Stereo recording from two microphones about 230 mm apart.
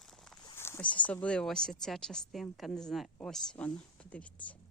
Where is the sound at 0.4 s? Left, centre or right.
Centre.